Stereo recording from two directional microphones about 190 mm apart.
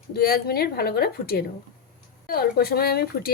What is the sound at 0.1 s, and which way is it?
A woman's voice, 55° left (ahead or behind).